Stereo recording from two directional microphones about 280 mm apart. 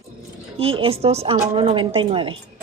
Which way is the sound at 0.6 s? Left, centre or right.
Centre.